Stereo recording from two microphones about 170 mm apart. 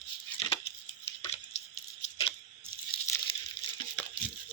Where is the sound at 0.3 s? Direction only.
30° left (ahead or behind).